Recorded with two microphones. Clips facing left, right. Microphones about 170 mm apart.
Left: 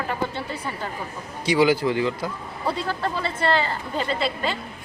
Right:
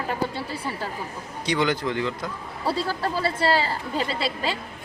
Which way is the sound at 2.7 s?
35° right (ahead or behind).